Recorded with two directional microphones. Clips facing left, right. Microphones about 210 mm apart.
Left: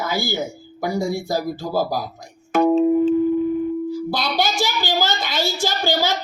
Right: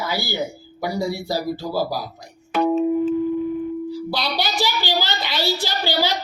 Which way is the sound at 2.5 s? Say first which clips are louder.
Left 3 dB; 45° left (ahead or behind).